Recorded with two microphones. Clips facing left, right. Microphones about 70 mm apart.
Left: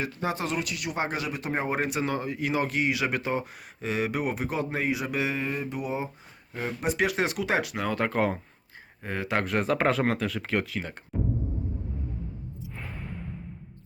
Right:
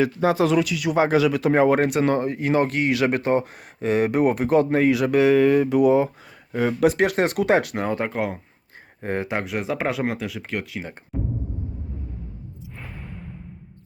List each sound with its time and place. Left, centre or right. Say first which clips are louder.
0.0 s speech: right 11 dB; right
6.5 s speech: right 10 dB; right
7.0 s speech: right 6 dB; right
7.8 s speech: right 3 dB; right
8.1 s speech: even; centre
9.0 s speech: right 7 dB; right
9.3 s speech: even; centre